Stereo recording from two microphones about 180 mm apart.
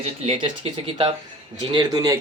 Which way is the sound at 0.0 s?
35° right (ahead or behind).